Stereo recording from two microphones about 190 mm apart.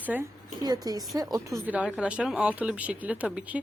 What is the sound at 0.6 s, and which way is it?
A woman's voice, 20° right (ahead or behind).